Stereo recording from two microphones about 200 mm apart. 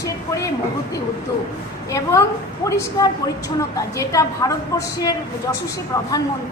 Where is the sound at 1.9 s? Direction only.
15° left (ahead or behind).